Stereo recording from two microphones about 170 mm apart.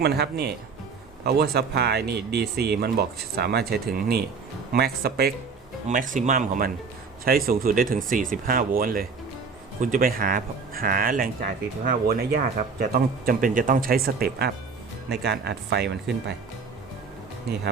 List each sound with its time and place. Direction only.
0.0 s speech: 70° right (ahead or behind)
6.1 s speech: 50° right (ahead or behind); by 16.1 s 75° right (ahead or behind)